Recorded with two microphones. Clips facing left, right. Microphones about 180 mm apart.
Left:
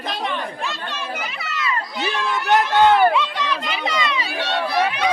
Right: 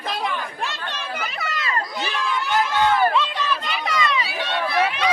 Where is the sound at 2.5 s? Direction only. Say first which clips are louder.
Left 6 dB; 65° left (ahead or behind).